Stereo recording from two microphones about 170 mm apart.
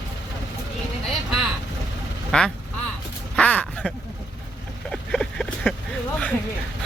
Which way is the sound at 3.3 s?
5° left (ahead or behind).